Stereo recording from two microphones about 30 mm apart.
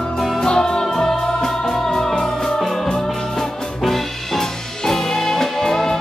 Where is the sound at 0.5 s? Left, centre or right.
Left.